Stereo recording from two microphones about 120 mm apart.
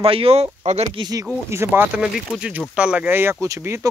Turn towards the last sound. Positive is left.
turn(degrees=-20)  # may be behind; listen again after turning